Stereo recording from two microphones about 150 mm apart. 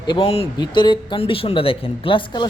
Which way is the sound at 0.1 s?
40° left (ahead or behind).